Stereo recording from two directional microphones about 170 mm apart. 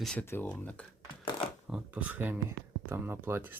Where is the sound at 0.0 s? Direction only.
5° left (ahead or behind).